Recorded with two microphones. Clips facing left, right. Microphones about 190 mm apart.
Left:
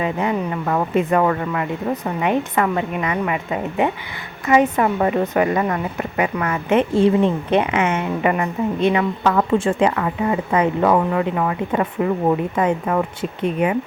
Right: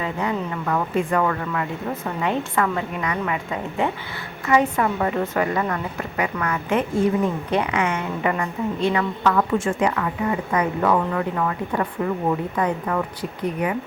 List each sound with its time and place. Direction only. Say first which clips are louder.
0.0 s speech: left 4 dB; 20° left (ahead or behind)
9.3 s a woman's voice: left 3 dB; 30° left (ahead or behind)